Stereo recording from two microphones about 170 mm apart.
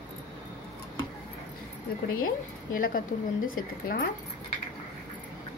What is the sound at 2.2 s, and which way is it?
Speech, 55° left (ahead or behind).